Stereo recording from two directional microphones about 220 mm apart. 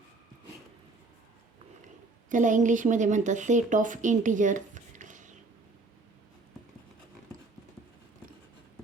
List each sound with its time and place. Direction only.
2.3 s speech: 35° right (ahead or behind)